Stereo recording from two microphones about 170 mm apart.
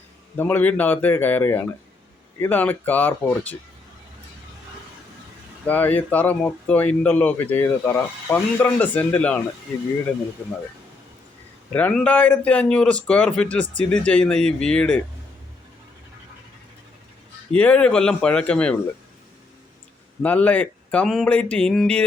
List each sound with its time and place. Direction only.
0.3 s speech: 10° left (ahead or behind)
5.6 s speech: 10° left (ahead or behind)
11.7 s speech: 10° left (ahead or behind)
17.5 s speech: 5° left (ahead or behind)
20.2 s speech: 10° left (ahead or behind)